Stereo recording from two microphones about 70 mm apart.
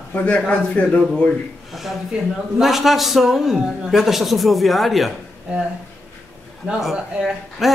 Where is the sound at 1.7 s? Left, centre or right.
Centre.